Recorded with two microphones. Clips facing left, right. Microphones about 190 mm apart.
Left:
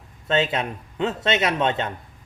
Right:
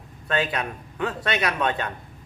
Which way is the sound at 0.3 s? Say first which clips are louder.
Left 3 dB; 25° left (ahead or behind).